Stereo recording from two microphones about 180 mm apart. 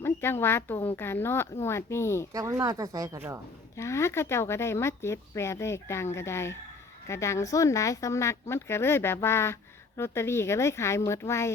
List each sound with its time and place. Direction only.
0.0 s speech: 15° left (ahead or behind)
2.3 s speech: 20° right (ahead or behind)
3.8 s speech: 15° left (ahead or behind)